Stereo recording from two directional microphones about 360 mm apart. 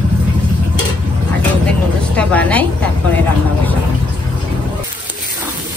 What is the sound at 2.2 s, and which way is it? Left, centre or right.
Speech, centre.